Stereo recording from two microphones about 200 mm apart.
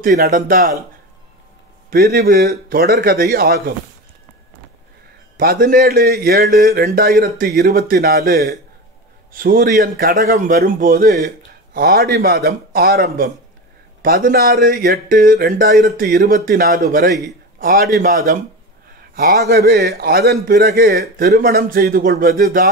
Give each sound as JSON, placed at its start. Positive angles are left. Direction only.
{"t": 0.0, "sound": "a man's voice", "side_deg": -40}
{"t": 1.9, "sound": "a man's voice", "side_deg": -50}
{"t": 5.4, "sound": "a man's voice", "side_deg": -45}